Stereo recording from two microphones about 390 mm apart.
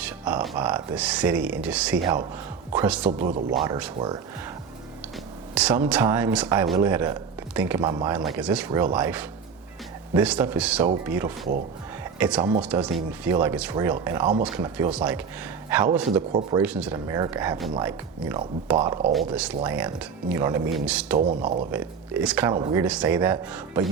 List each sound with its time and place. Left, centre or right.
0.0 s speech: centre
3.1 s speech: right
3.6 s speech: centre
5.5 s speech: centre
21.2 s speech: centre
21.7 s speech: centre